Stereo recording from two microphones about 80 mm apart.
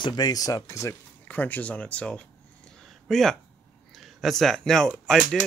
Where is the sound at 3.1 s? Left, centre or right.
Centre.